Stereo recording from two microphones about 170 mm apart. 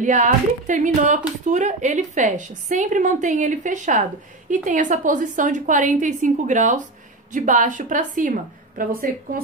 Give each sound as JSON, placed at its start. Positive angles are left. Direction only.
{"t": 0.0, "sound": "a woman's voice", "side_deg": -45}